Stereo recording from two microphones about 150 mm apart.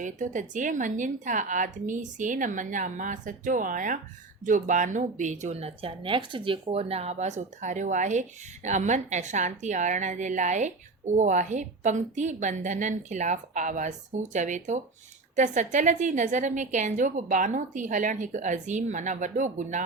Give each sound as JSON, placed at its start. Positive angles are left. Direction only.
{"t": 0.0, "sound": "a woman's voice", "side_deg": -55}